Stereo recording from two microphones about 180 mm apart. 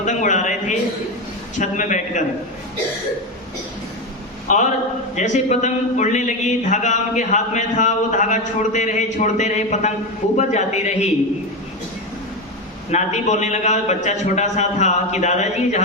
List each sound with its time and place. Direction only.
0.0 s a sound: 40° left (ahead or behind)
1.5 s speech: 45° left (ahead or behind)
4.5 s a man's voice: 45° left (ahead or behind)
12.9 s a man's voice: 40° left (ahead or behind)